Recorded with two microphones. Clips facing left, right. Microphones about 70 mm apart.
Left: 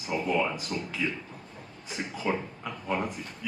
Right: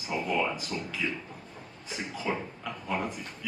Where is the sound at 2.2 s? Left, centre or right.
Centre.